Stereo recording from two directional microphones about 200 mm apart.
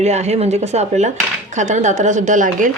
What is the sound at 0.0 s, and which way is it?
A woman's voice, 35° right (ahead or behind).